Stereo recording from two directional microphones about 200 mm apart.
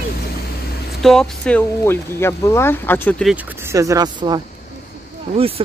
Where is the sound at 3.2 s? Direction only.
5° right (ahead or behind).